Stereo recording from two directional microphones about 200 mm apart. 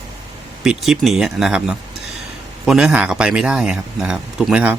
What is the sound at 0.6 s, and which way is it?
Speech, centre (ahead or behind).